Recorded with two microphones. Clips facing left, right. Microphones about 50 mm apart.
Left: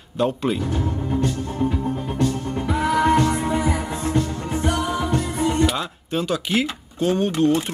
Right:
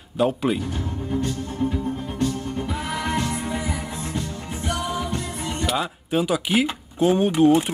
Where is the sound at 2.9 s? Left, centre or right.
Left.